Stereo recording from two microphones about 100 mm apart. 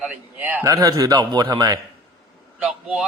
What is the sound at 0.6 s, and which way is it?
A man's voice, 35° right (ahead or behind).